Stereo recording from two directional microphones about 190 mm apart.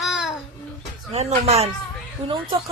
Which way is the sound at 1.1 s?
35° right (ahead or behind).